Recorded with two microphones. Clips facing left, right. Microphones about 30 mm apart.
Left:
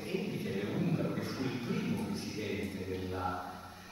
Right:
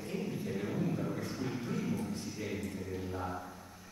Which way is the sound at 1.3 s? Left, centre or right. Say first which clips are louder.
Left 1 dB; left.